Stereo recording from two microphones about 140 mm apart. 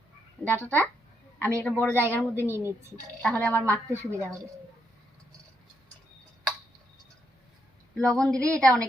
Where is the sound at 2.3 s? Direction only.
15° right (ahead or behind).